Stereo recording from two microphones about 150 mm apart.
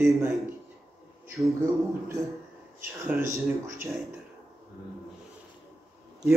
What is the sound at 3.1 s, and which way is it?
Speech, 15° right (ahead or behind).